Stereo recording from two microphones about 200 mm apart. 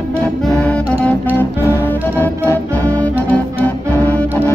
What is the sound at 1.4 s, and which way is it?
Music, 10° left (ahead or behind).